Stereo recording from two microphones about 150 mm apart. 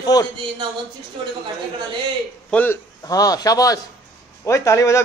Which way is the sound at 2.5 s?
10° left (ahead or behind).